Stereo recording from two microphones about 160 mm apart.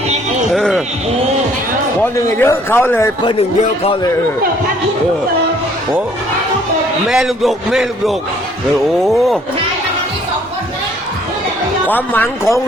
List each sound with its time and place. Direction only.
0.4 s sheep: centre (ahead or behind)
2.0 s a man's voice: 15° left (ahead or behind)
3.2 s speech: 35° left (ahead or behind)
7.1 s speech: centre (ahead or behind)
11.9 s a man's voice: 10° left (ahead or behind)